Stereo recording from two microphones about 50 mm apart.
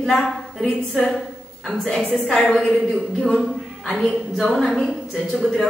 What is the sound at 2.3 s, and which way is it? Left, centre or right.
Speech, left.